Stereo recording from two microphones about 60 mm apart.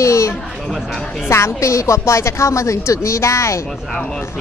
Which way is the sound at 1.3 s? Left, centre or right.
Left.